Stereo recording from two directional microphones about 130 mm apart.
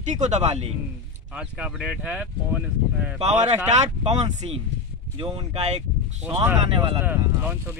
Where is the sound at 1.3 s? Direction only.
5° right (ahead or behind).